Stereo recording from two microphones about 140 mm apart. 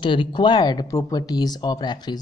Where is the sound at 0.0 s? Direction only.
35° left (ahead or behind).